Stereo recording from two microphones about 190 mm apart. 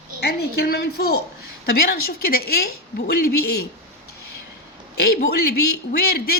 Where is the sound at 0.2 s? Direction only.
60° left (ahead or behind).